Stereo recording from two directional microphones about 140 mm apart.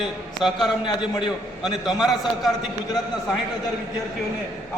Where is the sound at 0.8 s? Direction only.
35° left (ahead or behind).